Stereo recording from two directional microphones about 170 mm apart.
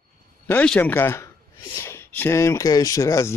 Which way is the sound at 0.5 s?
10° left (ahead or behind).